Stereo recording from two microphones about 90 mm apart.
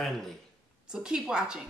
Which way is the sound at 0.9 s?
10° right (ahead or behind).